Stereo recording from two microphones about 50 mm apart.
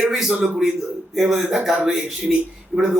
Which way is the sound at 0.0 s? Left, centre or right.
Centre.